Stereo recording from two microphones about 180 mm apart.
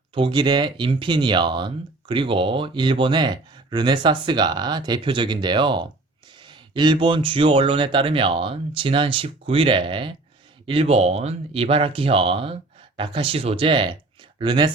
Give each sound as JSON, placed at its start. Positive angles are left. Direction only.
{"t": 0.1, "sound": "speech", "side_deg": -25}